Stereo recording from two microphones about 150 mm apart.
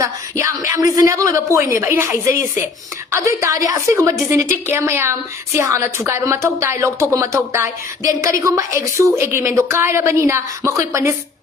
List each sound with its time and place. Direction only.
0.0 s a woman's voice: 20° right (ahead or behind)